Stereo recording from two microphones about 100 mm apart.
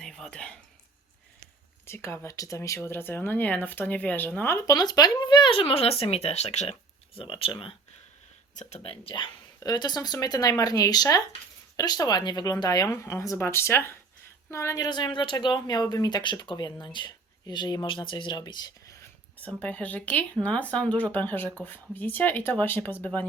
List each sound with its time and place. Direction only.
0.0 s a sound: 10° left (ahead or behind)
1.9 s speech: 25° left (ahead or behind)
4.6 s speech: 40° left (ahead or behind); by 7.7 s 65° left (ahead or behind)
8.7 s speech: 70° left (ahead or behind)
9.6 s speech: 45° left (ahead or behind); by 14.8 s 30° left (ahead or behind)
14.8 s speech: 45° left (ahead or behind)
17.8 s speech: 55° left (ahead or behind)
19.5 s speech: 15° left (ahead or behind)